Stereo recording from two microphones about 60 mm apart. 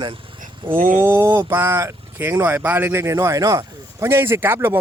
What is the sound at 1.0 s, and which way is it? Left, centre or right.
Speech, right.